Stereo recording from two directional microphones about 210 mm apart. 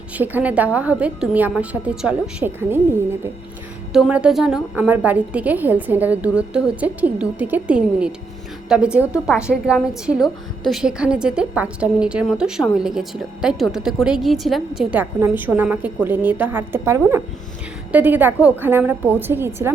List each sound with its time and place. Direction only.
0.2 s a woman's voice: 5° right (ahead or behind)